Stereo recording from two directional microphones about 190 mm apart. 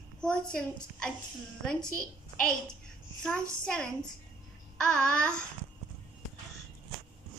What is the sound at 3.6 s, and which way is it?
A child's voice, 5° left (ahead or behind).